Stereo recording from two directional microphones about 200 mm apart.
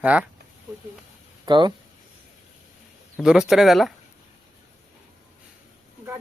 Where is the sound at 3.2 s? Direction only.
5° right (ahead or behind).